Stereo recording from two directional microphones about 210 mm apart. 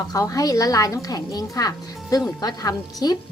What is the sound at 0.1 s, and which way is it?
A woman's voice, 15° left (ahead or behind).